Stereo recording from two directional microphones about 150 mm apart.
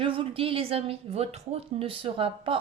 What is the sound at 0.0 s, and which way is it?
A woman's voice, 35° right (ahead or behind).